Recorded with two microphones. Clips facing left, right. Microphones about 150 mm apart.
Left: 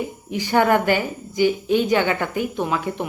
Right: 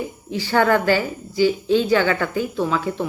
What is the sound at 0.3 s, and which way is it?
A woman's voice, 15° left (ahead or behind).